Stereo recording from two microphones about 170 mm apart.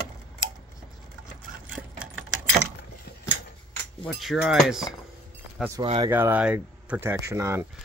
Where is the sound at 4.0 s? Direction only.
Centre (ahead or behind).